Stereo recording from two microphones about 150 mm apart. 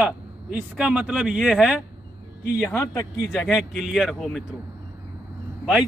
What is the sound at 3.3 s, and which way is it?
Speech, 5° right (ahead or behind).